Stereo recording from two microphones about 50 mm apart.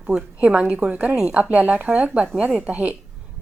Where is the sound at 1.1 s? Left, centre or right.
Centre.